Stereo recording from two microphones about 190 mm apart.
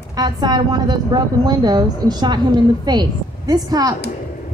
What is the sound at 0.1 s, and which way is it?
A woman's voice, 20° right (ahead or behind).